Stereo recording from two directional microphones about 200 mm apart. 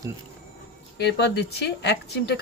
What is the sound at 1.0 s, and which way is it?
Speech, 60° left (ahead or behind).